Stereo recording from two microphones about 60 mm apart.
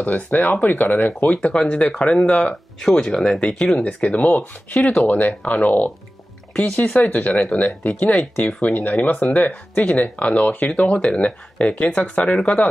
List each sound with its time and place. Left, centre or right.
0.0 s speech: left
10.8 s speech: centre